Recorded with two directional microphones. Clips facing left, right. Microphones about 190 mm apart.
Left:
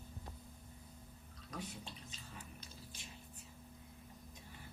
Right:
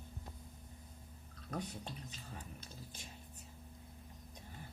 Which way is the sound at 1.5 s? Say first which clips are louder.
Right 4 dB; 55° right (ahead or behind).